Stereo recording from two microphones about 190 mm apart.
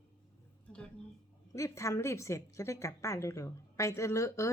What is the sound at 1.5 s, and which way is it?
A woman's voice, 15° left (ahead or behind).